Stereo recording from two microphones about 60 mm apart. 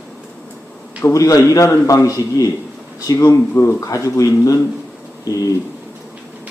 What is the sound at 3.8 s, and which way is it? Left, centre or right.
A man's voice, left.